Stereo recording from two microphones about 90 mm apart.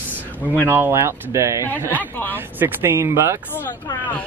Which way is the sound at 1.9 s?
20° left (ahead or behind).